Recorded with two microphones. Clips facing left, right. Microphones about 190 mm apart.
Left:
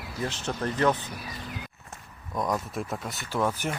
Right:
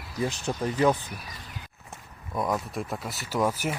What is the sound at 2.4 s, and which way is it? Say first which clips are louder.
Speech: even; centre (ahead or behind).